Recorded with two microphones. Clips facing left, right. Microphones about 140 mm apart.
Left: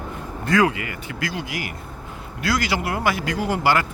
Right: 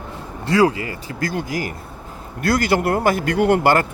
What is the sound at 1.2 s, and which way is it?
Speech, 45° right (ahead or behind).